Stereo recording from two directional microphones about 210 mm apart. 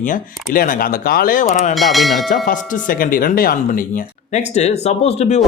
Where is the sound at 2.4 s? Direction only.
40° left (ahead or behind).